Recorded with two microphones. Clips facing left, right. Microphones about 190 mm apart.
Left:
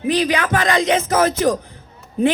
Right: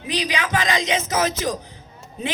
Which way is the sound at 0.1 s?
50° left (ahead or behind).